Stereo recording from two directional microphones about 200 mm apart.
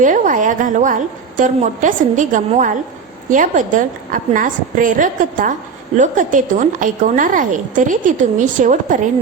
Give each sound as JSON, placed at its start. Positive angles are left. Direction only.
{"t": 0.0, "sound": "a woman's voice", "side_deg": -40}